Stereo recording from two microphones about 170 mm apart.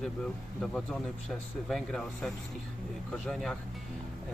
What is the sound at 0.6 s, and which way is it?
Speech, centre (ahead or behind).